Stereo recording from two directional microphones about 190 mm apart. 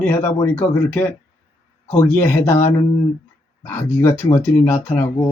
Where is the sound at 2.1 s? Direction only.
10° left (ahead or behind).